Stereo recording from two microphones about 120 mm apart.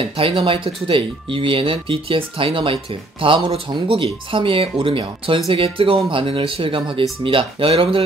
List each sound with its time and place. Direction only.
0.0 s speech: 50° right (ahead or behind)